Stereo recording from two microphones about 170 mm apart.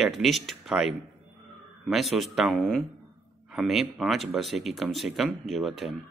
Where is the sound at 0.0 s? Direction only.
Centre (ahead or behind).